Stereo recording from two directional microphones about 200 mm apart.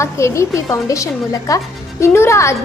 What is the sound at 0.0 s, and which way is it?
A woman's voice, 15° left (ahead or behind).